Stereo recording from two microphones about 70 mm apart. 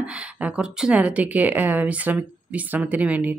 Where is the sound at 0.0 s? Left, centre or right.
Centre.